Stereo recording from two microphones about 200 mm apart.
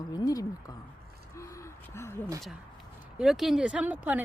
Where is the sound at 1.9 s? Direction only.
15° left (ahead or behind).